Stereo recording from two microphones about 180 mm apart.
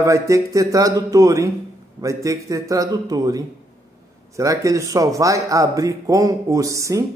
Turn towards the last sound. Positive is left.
turn(degrees=-15)  # may be behind; listen again after turning